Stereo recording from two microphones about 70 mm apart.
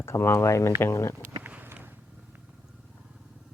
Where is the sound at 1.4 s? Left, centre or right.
Right.